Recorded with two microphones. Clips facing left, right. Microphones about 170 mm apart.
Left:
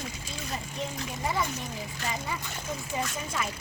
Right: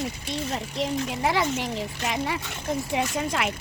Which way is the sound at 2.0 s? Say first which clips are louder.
Right 6 dB; 80° right.